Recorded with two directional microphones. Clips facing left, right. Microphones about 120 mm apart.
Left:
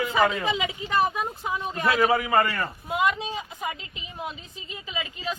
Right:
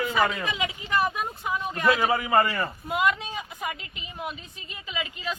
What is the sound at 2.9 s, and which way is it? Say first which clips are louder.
Speech: left 1 dB; 25° left (ahead or behind).